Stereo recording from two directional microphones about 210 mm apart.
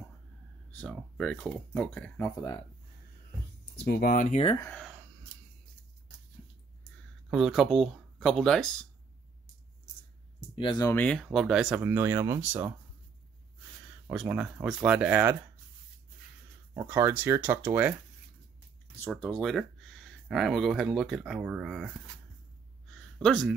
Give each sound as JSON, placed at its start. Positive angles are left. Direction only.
{"t": 0.7, "sound": "speech", "side_deg": 5}
{"t": 3.7, "sound": "speech", "side_deg": 50}
{"t": 4.7, "sound": "a sound", "side_deg": 0}
{"t": 7.2, "sound": "speech", "side_deg": 0}
{"t": 10.5, "sound": "speech", "side_deg": 25}
{"t": 14.0, "sound": "speech", "side_deg": -5}
{"t": 16.7, "sound": "speech", "side_deg": -10}
{"t": 18.9, "sound": "speech", "side_deg": 5}
{"t": 22.8, "sound": "a sound", "side_deg": 0}